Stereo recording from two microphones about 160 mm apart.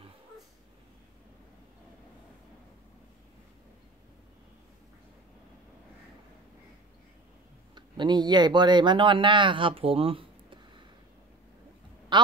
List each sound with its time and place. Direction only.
7.7 s speech: 25° right (ahead or behind)
12.1 s quack: 30° right (ahead or behind)